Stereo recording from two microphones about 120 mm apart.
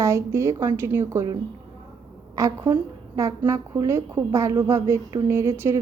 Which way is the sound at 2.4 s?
25° right (ahead or behind).